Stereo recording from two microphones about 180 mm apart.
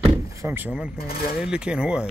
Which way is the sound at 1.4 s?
5° right (ahead or behind).